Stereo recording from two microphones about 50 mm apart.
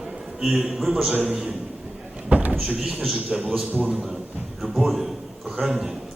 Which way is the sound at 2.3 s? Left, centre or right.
Right.